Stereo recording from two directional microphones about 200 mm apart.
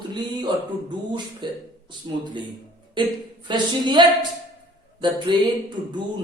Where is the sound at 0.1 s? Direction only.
20° right (ahead or behind).